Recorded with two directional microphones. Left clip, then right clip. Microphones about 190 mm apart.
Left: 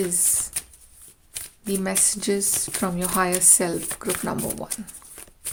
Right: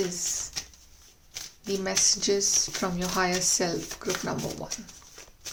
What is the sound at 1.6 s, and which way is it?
Speech, 30° left (ahead or behind).